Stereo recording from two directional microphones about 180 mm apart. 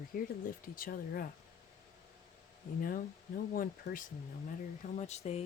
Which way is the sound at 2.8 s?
50° left (ahead or behind).